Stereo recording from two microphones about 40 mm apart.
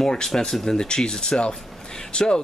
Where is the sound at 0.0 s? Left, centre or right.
Centre.